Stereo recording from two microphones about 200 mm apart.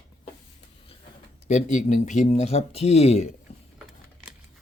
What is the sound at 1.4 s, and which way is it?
Speech, 40° left (ahead or behind).